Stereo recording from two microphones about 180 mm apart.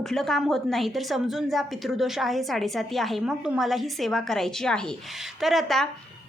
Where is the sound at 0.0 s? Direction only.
Centre (ahead or behind).